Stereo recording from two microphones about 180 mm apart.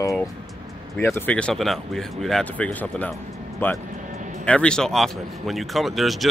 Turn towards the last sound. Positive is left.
turn(degrees=0)  # may be behind; listen again after turning